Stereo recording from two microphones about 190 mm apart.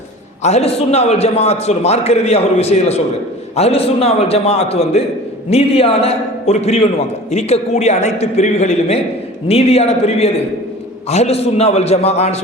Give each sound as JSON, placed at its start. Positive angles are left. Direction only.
{"t": 0.4, "sound": "a man's voice", "side_deg": 35}